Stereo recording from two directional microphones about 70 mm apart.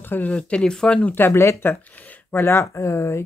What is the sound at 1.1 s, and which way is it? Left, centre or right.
Speech, left.